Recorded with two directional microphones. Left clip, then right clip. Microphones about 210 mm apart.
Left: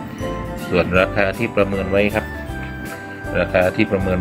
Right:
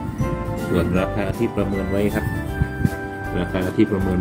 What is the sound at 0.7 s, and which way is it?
Speech, centre (ahead or behind).